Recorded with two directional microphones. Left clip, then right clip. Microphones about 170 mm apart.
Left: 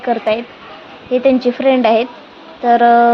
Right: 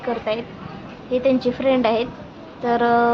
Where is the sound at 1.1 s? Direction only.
15° left (ahead or behind).